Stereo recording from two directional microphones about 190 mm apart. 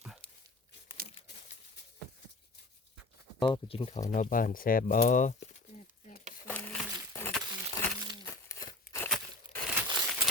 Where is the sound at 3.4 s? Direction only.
25° left (ahead or behind); by 5.3 s 40° left (ahead or behind).